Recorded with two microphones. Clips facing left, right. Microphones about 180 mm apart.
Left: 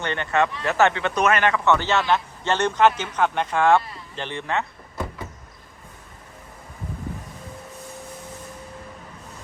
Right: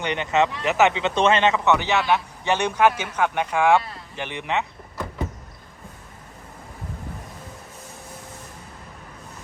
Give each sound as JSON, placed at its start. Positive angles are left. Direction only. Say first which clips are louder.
{"t": 0.0, "sound": "speech", "louder": "right 1 dB", "side_deg": -15}